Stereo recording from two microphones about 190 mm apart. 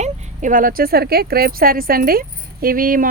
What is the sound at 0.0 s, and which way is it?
Speech, 45° right (ahead or behind).